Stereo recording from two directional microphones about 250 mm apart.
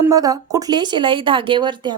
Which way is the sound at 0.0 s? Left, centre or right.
Centre.